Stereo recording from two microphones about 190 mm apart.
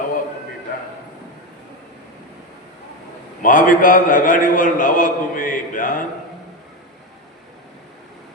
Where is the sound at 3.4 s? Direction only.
45° left (ahead or behind).